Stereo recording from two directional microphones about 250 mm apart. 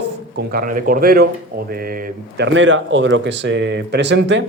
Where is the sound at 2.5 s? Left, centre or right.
Right.